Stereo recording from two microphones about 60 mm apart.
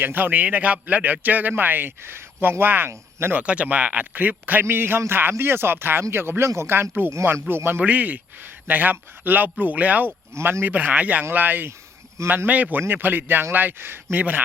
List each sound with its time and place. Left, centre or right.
0.0 s speech: right
3.3 s speech: right
7.8 s speech: right
12.2 s a man's voice: right
12.9 s speech: right
14.2 s speech: right